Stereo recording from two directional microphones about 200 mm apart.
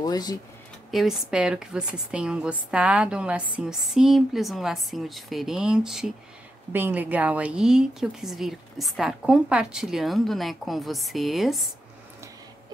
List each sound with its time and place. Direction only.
0.0 s speech: 20° left (ahead or behind)
0.9 s a woman's voice: centre (ahead or behind)